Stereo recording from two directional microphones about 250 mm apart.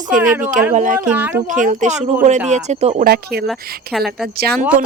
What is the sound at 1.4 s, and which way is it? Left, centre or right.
Speech, right.